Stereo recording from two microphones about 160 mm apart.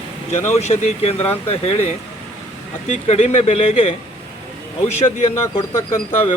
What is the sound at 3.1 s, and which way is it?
Speech, 40° left (ahead or behind).